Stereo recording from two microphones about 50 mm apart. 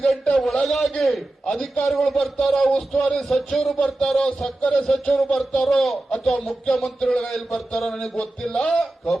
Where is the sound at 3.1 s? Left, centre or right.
Centre.